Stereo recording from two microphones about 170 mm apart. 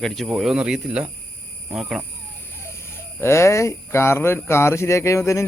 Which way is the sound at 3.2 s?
15° left (ahead or behind).